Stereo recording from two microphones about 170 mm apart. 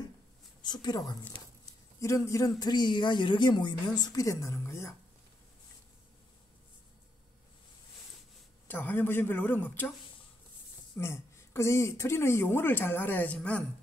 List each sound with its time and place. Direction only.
0.6 s a woman's voice: 25° left (ahead or behind)
8.6 s a woman's voice: 10° left (ahead or behind)
11.0 s a woman's voice: 15° left (ahead or behind)